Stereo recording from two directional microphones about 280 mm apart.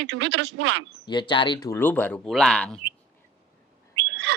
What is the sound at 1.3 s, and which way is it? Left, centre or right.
Speech, centre.